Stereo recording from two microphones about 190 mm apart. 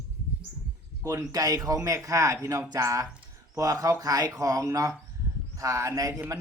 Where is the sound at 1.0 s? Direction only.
15° right (ahead or behind).